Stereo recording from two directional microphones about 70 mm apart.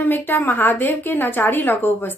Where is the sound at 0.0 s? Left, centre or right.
Left.